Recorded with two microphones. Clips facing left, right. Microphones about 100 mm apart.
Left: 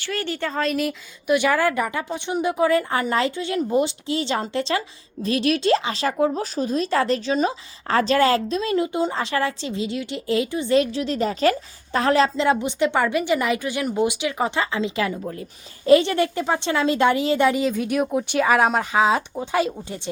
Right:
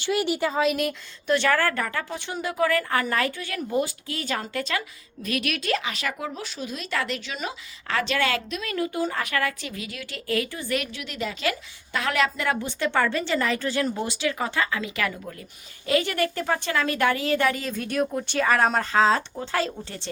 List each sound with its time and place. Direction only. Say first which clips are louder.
0.0 s speech: right 3 dB; 15° right (ahead or behind)
1.3 s a woman's voice: left 3 dB; 10° left (ahead or behind)